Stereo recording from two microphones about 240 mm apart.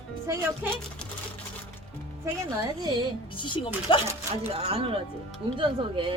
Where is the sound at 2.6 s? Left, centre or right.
Centre.